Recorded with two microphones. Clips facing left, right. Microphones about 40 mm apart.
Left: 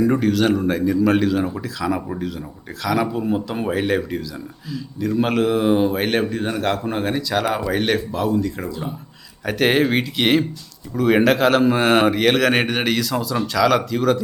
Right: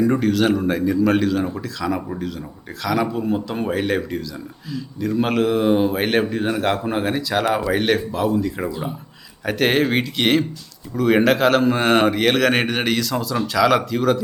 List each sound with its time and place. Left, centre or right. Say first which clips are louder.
0.0 s a man's voice: even; centre
9.5 s a man's voice: left 1 dB; centre